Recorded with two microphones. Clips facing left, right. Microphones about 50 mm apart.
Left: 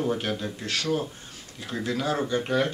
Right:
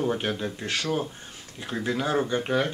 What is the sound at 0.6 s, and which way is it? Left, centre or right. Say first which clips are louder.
Speech: left 1 dB; right.